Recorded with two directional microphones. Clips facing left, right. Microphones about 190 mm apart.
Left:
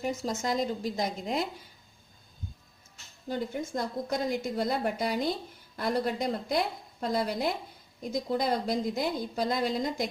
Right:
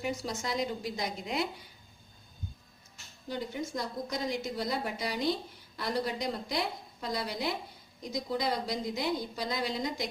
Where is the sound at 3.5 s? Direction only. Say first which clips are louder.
Left 3 dB; 50° left (ahead or behind).